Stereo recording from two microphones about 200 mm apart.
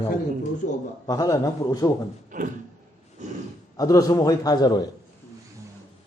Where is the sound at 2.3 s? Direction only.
40° right (ahead or behind).